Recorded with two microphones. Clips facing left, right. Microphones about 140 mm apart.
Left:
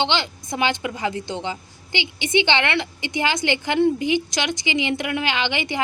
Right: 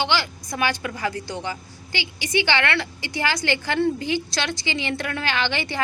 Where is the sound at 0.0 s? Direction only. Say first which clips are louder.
Left 1 dB; 20° left (ahead or behind).